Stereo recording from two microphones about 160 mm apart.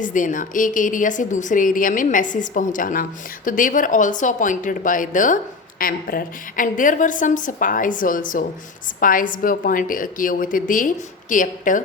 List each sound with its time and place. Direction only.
0.0 s a woman's voice: 55° left (ahead or behind)